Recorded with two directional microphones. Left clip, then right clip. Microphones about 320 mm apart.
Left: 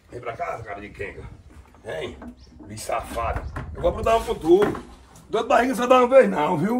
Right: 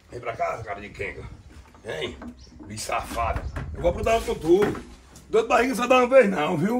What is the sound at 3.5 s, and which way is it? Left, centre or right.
A man's voice, centre.